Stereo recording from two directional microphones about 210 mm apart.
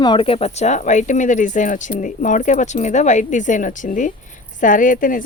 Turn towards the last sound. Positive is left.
turn(degrees=40)  # may be behind; listen again after turning